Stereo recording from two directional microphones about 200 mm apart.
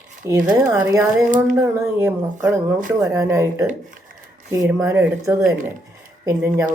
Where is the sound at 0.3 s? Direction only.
20° right (ahead or behind).